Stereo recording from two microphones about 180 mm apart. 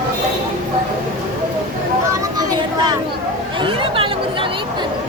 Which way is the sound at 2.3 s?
20° right (ahead or behind).